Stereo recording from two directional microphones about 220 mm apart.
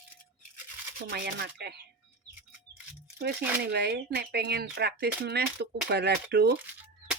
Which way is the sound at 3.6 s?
50° right (ahead or behind).